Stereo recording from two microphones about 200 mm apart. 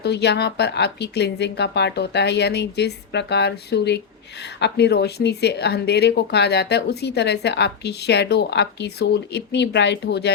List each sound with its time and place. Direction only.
0.0 s speech: 55° left (ahead or behind)